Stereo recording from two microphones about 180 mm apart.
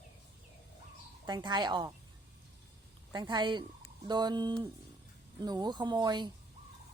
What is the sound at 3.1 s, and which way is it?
Speech, 25° right (ahead or behind).